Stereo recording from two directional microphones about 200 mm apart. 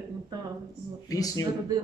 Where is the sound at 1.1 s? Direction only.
15° left (ahead or behind).